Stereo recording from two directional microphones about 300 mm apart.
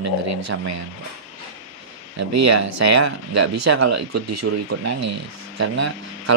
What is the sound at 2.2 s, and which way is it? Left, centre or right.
Speech, right.